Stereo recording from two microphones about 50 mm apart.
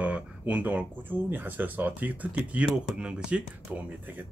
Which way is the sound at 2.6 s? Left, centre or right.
Centre.